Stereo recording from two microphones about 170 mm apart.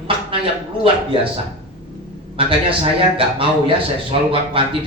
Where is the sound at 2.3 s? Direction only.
30° right (ahead or behind).